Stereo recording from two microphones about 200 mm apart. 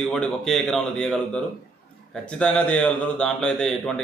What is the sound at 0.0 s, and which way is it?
A man's voice, centre (ahead or behind).